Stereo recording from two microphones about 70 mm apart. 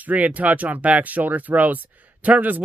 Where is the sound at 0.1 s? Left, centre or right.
Right.